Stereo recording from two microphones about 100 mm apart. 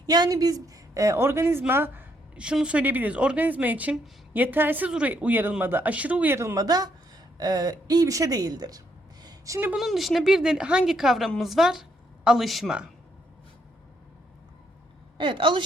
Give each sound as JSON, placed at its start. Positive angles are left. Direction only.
{"t": 0.0, "sound": "speech", "side_deg": -40}
{"t": 6.3, "sound": "speech", "side_deg": -30}
{"t": 6.7, "sound": "speech", "side_deg": -40}
{"t": 9.7, "sound": "a woman's voice", "side_deg": 0}
{"t": 15.2, "sound": "speech", "side_deg": -55}